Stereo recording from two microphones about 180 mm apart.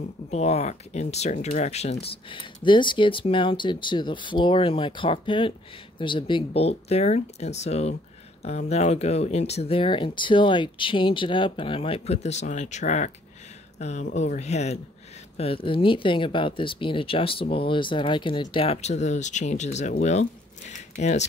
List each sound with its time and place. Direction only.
0.3 s speech: 35° left (ahead or behind)